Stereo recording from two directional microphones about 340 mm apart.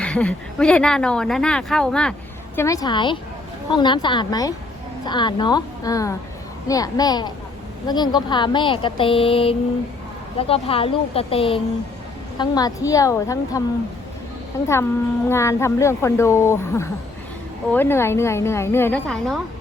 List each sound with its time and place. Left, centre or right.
0.0 s a woman's voice: centre